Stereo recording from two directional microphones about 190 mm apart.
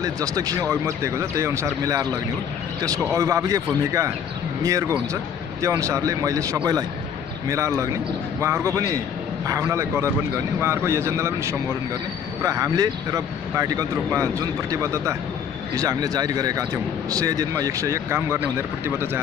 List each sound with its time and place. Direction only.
0.0 s speech: 20° right (ahead or behind)